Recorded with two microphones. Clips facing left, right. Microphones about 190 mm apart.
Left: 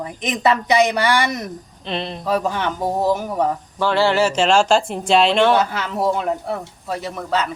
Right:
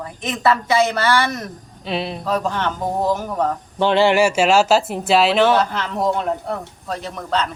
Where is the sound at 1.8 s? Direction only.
5° right (ahead or behind).